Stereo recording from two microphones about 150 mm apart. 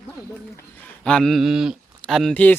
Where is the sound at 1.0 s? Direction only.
5° left (ahead or behind).